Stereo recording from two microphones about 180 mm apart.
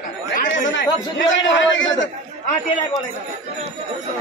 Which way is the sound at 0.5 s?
90° left.